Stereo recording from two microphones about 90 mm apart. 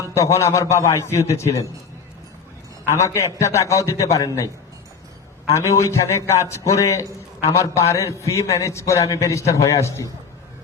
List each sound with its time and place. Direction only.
0.1 s a man's voice: 35° left (ahead or behind)
2.8 s a man's voice: 35° left (ahead or behind)
5.5 s a man's voice: 35° left (ahead or behind)